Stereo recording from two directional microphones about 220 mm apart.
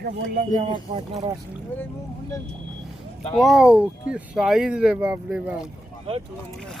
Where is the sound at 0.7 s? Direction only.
25° right (ahead or behind).